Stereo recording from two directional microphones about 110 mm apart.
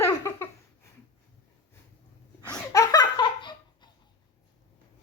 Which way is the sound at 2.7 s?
30° left (ahead or behind).